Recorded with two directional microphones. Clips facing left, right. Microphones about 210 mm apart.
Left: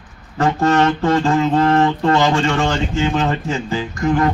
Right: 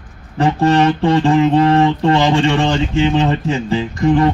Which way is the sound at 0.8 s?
15° right (ahead or behind).